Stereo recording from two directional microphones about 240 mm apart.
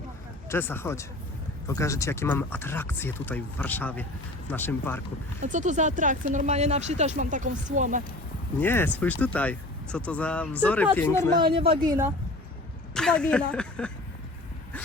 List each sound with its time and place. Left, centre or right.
0.4 s speech: centre
5.4 s speech: right
8.5 s speech: centre
11.3 s speech: right
11.9 s speech: centre
12.9 s a woman's voice: centre